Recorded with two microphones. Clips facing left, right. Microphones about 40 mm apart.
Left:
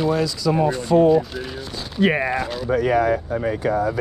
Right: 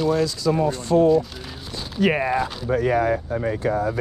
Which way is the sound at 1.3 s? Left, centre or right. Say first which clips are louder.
Left 5 dB; centre.